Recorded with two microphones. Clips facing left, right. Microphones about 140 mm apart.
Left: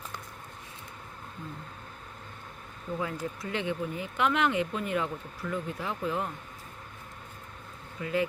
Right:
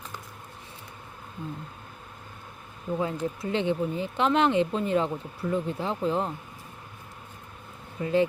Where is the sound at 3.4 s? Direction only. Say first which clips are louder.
Right 6 dB; 30° right (ahead or behind).